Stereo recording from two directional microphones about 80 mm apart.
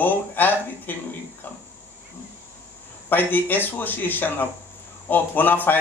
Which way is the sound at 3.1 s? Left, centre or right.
Left.